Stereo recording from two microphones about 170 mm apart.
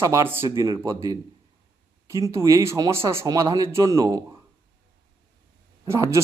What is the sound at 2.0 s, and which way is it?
A man's voice, 15° right (ahead or behind).